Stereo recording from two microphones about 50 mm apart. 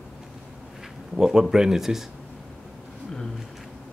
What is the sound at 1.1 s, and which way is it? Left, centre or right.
Speech, centre.